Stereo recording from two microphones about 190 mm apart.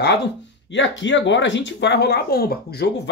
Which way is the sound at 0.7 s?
75° left (ahead or behind).